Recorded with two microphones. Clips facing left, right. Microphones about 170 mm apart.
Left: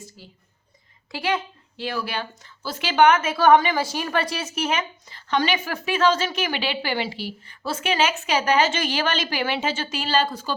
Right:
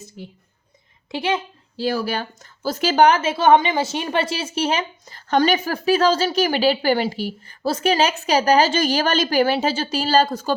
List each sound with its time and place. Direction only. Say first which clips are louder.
1.1 s a woman's voice: right 3 dB; 25° right (ahead or behind)
1.7 s a woman's voice: right 6 dB; 35° right (ahead or behind)